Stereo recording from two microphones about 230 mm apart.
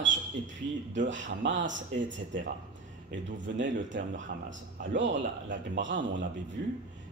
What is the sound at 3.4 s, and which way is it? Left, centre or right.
Speech, right.